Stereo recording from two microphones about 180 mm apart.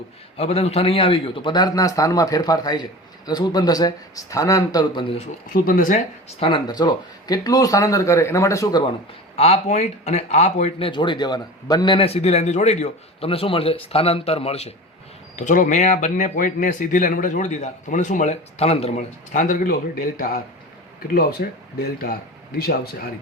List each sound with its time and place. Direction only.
0.3 s a man's voice: 35° left (ahead or behind)
5.6 s speech: 50° left (ahead or behind)
6.4 s speech: 25° left (ahead or behind)
15.4 s speech: 45° left (ahead or behind)
21.4 s speech: 55° left (ahead or behind)